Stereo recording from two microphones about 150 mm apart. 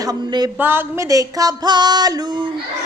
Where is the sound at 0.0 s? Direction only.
25° right (ahead or behind).